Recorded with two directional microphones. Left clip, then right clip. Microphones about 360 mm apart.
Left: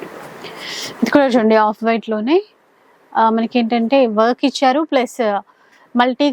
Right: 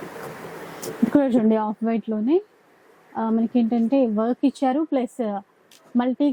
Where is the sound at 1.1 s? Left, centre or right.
Centre.